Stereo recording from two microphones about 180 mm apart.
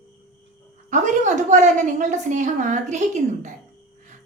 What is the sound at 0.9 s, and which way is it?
A woman's voice, 40° right (ahead or behind).